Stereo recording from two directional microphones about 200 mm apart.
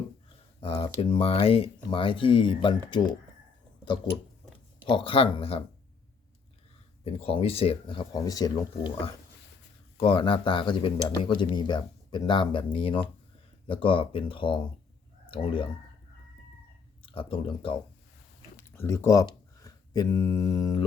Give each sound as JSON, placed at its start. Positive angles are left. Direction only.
{"t": 0.6, "sound": "speech", "side_deg": 30}
{"t": 4.9, "sound": "speech", "side_deg": 25}
{"t": 7.0, "sound": "speech", "side_deg": 30}
{"t": 17.1, "sound": "speech", "side_deg": 25}
{"t": 18.5, "sound": "speech", "side_deg": 10}